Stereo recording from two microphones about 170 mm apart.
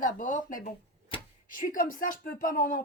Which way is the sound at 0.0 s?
50° left (ahead or behind).